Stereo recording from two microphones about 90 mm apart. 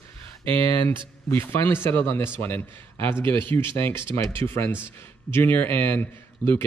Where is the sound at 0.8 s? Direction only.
30° left (ahead or behind).